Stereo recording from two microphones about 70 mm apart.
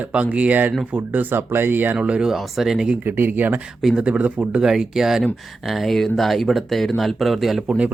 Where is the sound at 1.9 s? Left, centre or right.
Centre.